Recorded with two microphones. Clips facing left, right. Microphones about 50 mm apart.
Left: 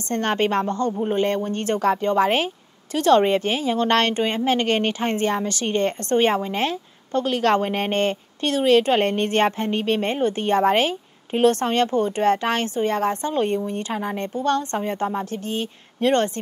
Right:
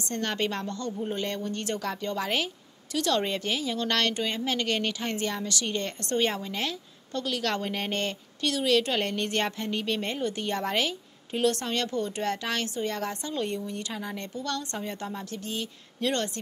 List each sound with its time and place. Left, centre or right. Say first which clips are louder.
0.1 s speech: left 9 dB; left